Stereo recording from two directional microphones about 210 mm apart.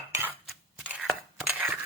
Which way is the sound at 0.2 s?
5° right (ahead or behind).